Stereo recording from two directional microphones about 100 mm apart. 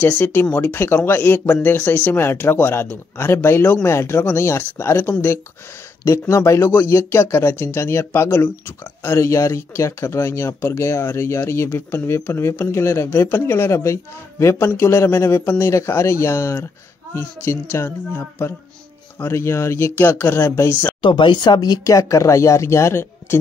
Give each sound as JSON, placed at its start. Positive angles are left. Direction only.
{"t": 0.0, "sound": "speech", "side_deg": 20}
{"t": 21.0, "sound": "speech", "side_deg": 50}